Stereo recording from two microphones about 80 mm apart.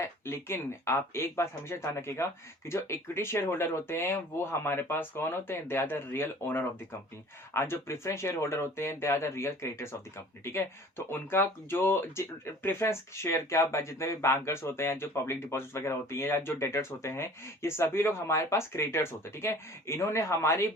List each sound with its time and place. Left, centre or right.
0.0 s speech: left